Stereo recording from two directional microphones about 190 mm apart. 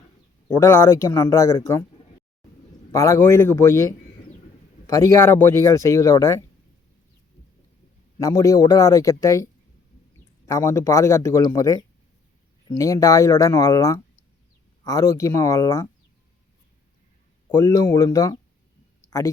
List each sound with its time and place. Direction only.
0.4 s speech: 15° left (ahead or behind)
2.9 s speech: 15° left (ahead or behind)
8.2 s speech: 15° left (ahead or behind)
10.5 s speech: 15° left (ahead or behind)
17.5 s speech: 20° left (ahead or behind)